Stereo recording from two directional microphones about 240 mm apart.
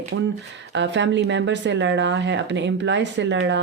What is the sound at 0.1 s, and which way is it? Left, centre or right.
A woman's voice, right.